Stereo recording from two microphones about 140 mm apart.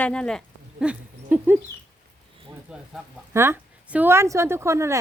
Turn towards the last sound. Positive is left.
turn(degrees=-20)  # may be behind; listen again after turning